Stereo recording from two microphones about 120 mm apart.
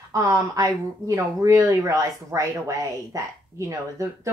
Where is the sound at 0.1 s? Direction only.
30° right (ahead or behind).